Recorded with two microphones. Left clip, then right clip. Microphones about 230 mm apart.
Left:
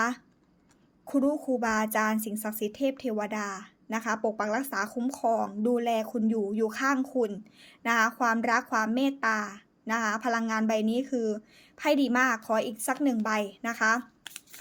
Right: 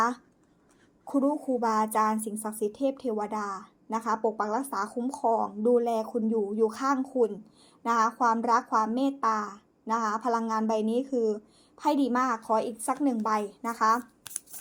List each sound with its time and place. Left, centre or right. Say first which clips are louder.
1.0 s a woman's voice: even; left